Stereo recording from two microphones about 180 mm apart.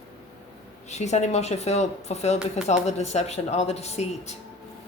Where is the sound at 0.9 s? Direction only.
40° left (ahead or behind).